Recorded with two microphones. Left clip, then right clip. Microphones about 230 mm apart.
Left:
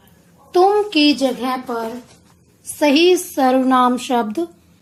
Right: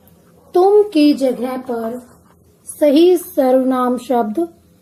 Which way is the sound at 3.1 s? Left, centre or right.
Left.